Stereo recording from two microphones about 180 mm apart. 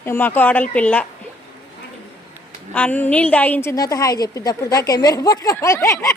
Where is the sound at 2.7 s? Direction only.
10° left (ahead or behind).